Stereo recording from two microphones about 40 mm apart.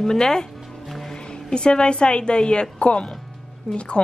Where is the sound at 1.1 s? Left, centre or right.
Left.